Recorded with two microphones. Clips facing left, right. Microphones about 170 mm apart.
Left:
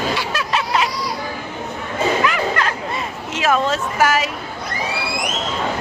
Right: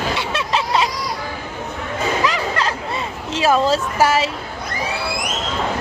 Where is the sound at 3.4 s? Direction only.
30° right (ahead or behind).